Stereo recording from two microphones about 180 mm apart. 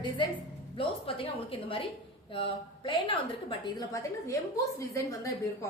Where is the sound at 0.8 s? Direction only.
30° left (ahead or behind).